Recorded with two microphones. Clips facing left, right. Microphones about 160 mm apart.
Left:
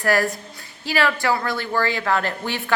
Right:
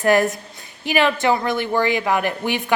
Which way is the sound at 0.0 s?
20° right (ahead or behind).